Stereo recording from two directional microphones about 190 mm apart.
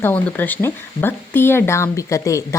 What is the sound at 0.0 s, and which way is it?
Speech, 10° left (ahead or behind).